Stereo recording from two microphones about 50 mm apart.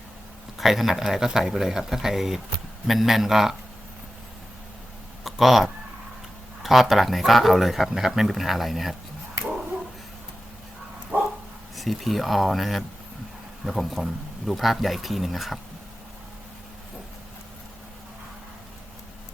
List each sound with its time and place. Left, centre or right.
0.6 s speech: centre
5.2 s speech: centre
11.1 s bow-wow: right
11.8 s speech: centre